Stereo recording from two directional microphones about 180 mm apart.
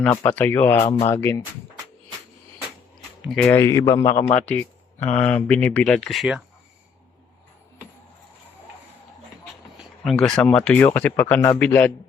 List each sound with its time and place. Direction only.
0.0 s speech: 10° left (ahead or behind)
3.2 s speech: 5° left (ahead or behind)
9.7 s speech: centre (ahead or behind)